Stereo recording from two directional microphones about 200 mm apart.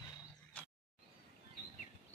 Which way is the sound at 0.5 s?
10° left (ahead or behind).